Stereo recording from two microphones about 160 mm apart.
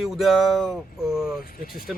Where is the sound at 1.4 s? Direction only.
60° left (ahead or behind).